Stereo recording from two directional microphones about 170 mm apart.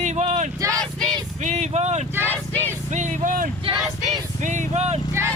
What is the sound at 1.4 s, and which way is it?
Speech, 45° right (ahead or behind).